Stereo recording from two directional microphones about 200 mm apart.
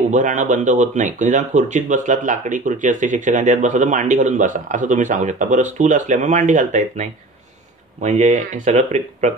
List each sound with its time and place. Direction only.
0.1 s speech: 40° right (ahead or behind)